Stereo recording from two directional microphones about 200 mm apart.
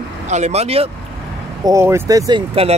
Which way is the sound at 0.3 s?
35° right (ahead or behind).